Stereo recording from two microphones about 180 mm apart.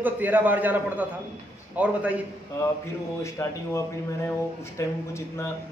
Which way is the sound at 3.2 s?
15° left (ahead or behind).